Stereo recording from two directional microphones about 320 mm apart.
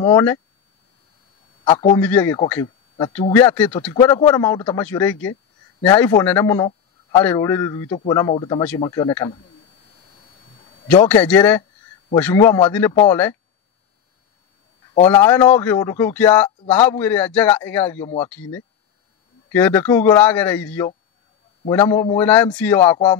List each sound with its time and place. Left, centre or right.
0.0 s a man's voice: centre
1.6 s a man's voice: centre
2.0 s a man's voice: centre
10.9 s a man's voice: centre
15.0 s a man's voice: centre